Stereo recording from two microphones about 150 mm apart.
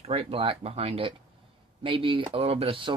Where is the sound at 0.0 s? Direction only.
40° right (ahead or behind).